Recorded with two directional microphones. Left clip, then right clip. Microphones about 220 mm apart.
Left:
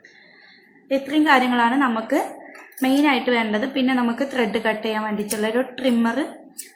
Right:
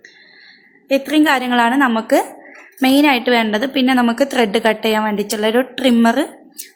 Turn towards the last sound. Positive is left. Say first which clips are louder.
# right 7 dB
turn(degrees=-50)  # may be behind; listen again after turning